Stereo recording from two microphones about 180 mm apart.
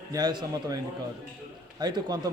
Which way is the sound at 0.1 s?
25° right (ahead or behind).